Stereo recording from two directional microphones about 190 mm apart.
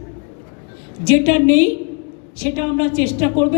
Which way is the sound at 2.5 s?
45° left (ahead or behind).